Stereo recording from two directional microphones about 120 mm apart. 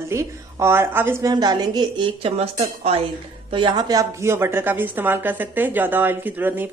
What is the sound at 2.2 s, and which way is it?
Speech, 60° right (ahead or behind).